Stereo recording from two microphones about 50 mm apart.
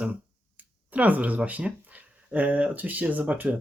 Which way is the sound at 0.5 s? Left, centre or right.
Right.